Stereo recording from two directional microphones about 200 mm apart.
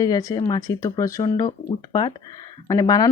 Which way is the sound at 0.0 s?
20° left (ahead or behind).